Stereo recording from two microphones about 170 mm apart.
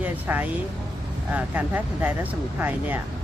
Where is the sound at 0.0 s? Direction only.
10° right (ahead or behind).